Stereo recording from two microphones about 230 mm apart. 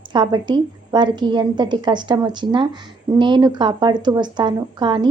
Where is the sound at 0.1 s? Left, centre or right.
Centre.